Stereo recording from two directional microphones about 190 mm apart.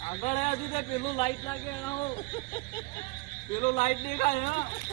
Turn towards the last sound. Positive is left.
turn(degrees=40)  # may be behind; listen again after turning